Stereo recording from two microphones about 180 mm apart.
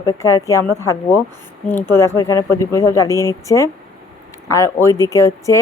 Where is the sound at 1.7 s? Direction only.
15° left (ahead or behind).